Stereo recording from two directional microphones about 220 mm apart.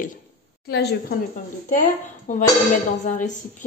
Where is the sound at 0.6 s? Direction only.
50° left (ahead or behind).